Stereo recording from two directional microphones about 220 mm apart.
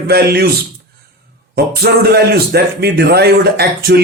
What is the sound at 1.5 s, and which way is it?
A man's voice, 45° right (ahead or behind).